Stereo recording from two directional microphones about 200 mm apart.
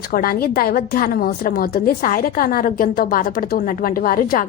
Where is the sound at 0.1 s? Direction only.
50° left (ahead or behind).